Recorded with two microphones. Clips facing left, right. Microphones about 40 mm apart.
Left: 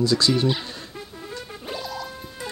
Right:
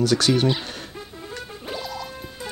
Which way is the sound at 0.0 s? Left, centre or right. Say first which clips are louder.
Even; right.